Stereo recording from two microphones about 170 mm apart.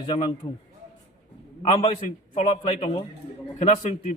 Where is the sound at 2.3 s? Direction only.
40° left (ahead or behind).